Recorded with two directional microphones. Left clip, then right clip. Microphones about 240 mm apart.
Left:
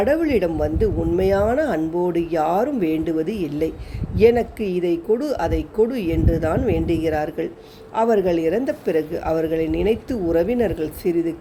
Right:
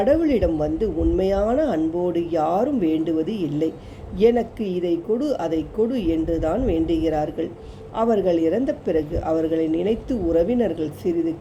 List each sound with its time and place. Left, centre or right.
0.0 s speech: centre